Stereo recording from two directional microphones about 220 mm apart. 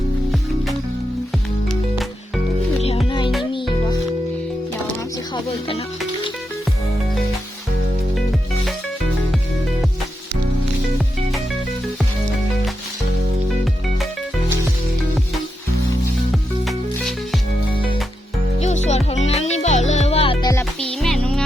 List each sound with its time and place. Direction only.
3.1 s music: 20° left (ahead or behind)
16.3 s music: centre (ahead or behind)
18.6 s music: 30° left (ahead or behind); by 21.4 s centre (ahead or behind)